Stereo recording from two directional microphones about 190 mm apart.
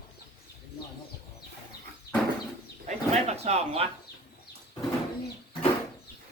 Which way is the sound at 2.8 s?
35° right (ahead or behind).